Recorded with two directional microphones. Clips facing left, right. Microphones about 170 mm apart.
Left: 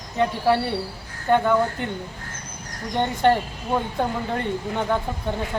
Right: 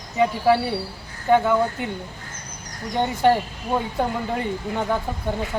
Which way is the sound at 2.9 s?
10° right (ahead or behind).